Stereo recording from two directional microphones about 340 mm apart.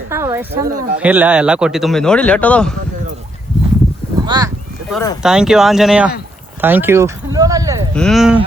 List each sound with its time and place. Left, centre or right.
0.1 s speech: centre
0.7 s speech: right
0.9 s speech: centre
4.3 s speech: centre
4.9 s speech: centre
6.6 s a sound: centre
7.9 s speech: centre